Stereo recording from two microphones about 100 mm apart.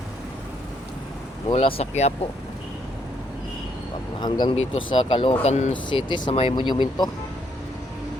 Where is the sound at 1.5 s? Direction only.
70° left (ahead or behind).